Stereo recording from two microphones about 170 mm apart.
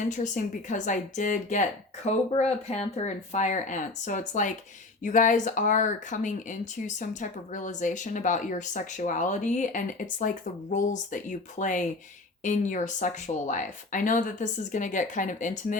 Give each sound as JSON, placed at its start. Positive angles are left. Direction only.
{"t": 0.1, "sound": "speech", "side_deg": 45}